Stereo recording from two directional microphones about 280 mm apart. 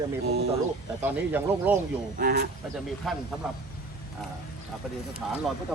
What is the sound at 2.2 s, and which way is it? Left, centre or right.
Speech, right.